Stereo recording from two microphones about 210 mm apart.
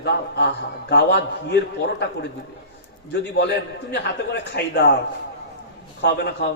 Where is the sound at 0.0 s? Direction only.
50° left (ahead or behind).